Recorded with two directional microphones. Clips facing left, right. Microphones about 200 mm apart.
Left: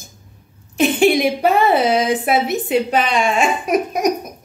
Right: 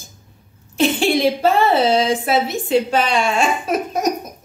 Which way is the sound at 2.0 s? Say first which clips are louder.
Left 1 dB; 20° left (ahead or behind).